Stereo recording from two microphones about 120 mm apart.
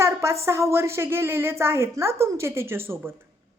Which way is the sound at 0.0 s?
25° right (ahead or behind).